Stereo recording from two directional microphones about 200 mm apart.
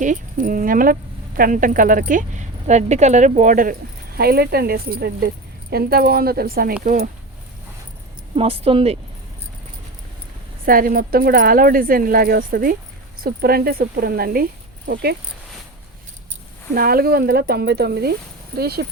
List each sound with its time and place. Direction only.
0.0 s speech: 40° right (ahead or behind)
8.4 s speech: 30° right (ahead or behind)
10.7 s speech: 45° right (ahead or behind)
16.7 s speech: 50° right (ahead or behind)